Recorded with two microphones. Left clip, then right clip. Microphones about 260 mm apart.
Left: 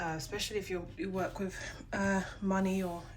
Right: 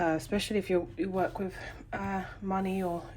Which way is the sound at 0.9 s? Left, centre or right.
Centre.